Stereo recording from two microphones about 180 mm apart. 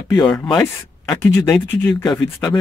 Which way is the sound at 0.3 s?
5° left (ahead or behind).